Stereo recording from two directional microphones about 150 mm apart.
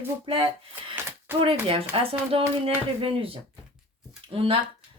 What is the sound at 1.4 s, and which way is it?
Speech, 40° right (ahead or behind).